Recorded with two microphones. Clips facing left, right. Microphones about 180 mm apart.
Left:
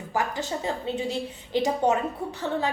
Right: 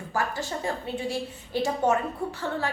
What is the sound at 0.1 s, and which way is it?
A woman's voice, 20° left (ahead or behind).